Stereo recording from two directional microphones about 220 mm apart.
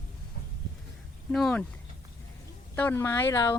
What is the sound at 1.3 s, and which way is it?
Speech, 5° left (ahead or behind).